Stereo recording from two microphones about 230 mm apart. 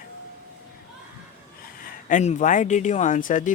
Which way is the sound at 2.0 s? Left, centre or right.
Left.